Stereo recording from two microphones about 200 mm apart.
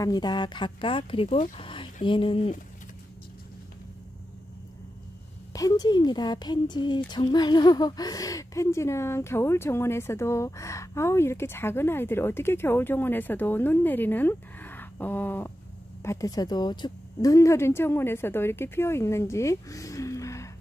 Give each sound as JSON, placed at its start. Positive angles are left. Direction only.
{"t": 0.0, "sound": "speech", "side_deg": 20}
{"t": 5.5, "sound": "speech", "side_deg": 20}